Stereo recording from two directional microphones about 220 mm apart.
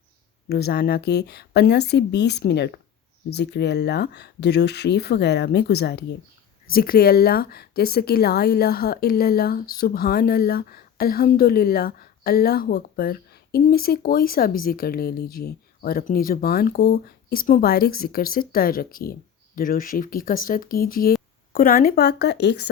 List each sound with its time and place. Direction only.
0.4 s speech: 45° left (ahead or behind)